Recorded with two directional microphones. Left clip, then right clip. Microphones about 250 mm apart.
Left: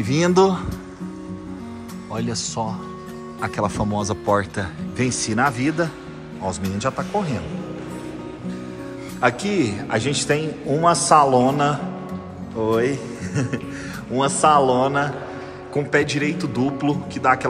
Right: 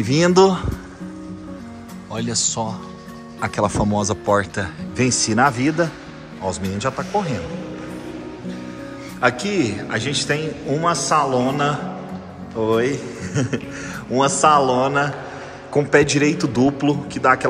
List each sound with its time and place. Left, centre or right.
0.0 s a man's voice: centre
2.1 s a man's voice: centre
9.2 s a man's voice: centre